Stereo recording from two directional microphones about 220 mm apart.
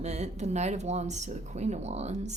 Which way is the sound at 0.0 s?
30° right (ahead or behind).